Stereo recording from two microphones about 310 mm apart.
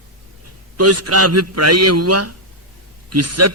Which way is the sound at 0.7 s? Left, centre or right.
Right.